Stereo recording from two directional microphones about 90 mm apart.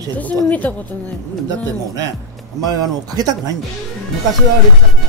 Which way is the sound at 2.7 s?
45° right (ahead or behind).